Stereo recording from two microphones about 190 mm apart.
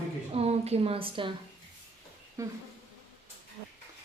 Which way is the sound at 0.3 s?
35° right (ahead or behind).